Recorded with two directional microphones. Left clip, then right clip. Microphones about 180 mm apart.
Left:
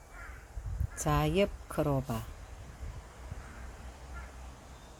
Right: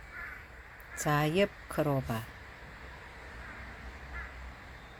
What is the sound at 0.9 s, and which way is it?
Speech, 5° left (ahead or behind).